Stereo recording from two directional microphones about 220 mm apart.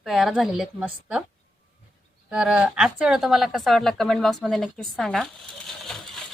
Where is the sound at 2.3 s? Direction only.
5° right (ahead or behind).